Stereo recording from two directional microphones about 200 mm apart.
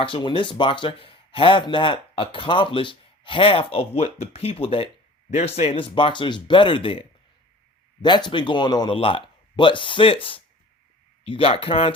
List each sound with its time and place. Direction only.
0.0 s speech: 25° left (ahead or behind)